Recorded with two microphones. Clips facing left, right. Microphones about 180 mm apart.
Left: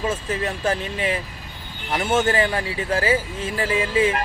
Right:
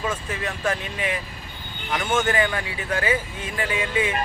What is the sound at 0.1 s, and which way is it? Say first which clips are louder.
A man's voice: left 4 dB; 25° left (ahead or behind).